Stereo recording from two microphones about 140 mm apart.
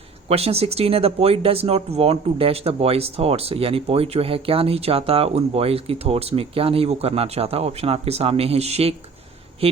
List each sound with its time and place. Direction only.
0.3 s speech: 45° right (ahead or behind)